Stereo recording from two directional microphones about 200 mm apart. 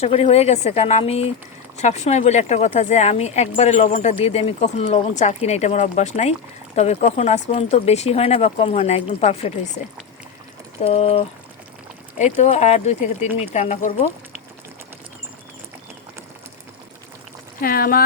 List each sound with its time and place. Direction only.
0.0 s speech: 30° left (ahead or behind)
10.8 s speech: 30° left (ahead or behind)
17.6 s speech: 45° left (ahead or behind)